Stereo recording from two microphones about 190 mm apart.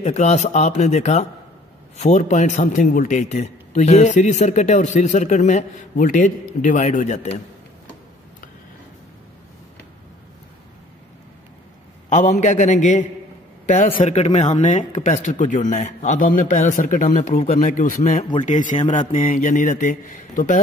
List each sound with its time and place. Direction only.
0.0 s a man's voice: 35° left (ahead or behind)
12.1 s a man's voice: 40° left (ahead or behind)